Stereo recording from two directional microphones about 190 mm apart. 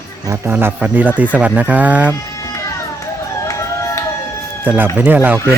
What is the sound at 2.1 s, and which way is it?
Music, 15° left (ahead or behind).